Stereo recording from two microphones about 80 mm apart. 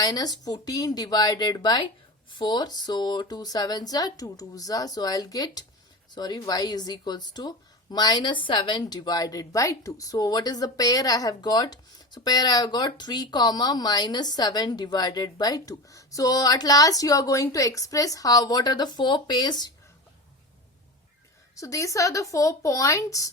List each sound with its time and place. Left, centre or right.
0.0 s speech: left
8.8 s speech: left
21.5 s speech: left